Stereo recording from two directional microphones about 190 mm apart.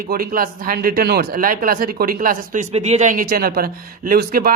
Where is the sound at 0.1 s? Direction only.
50° right (ahead or behind).